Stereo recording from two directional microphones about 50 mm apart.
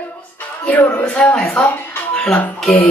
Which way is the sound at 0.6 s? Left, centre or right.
Left.